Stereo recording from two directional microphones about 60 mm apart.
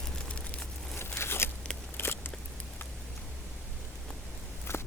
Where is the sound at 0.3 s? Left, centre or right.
Left.